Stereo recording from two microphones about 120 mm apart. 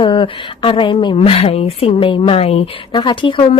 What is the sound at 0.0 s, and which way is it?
Speech, 45° left (ahead or behind).